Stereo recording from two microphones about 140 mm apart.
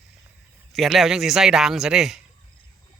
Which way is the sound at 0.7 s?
Centre (ahead or behind).